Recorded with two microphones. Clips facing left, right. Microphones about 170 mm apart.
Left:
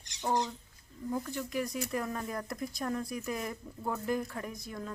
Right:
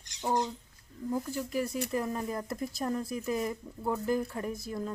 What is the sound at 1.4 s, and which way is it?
Speech, 35° right (ahead or behind).